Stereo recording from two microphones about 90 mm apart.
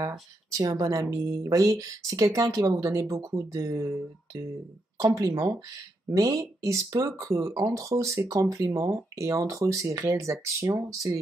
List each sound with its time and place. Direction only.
0.5 s speech: 40° right (ahead or behind)